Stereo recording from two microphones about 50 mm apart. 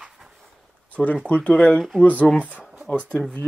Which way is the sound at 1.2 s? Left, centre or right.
Left.